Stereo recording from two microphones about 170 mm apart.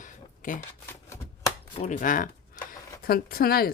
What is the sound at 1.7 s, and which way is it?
Speech, 45° left (ahead or behind).